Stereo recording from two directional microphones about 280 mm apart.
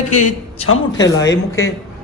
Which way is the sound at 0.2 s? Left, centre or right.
Left.